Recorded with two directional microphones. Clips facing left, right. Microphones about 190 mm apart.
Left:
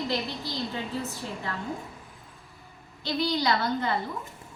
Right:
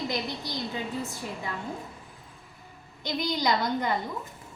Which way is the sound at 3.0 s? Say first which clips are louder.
Left 1 dB; 15° right (ahead or behind).